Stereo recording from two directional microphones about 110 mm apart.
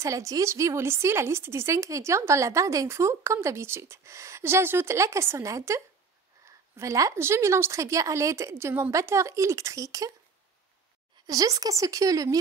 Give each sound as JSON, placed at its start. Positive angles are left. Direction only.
{"t": 0.0, "sound": "speech", "side_deg": -30}
{"t": 11.2, "sound": "a woman's voice", "side_deg": -35}